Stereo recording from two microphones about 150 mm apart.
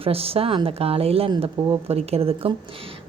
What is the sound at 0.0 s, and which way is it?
Speech, 40° right (ahead or behind).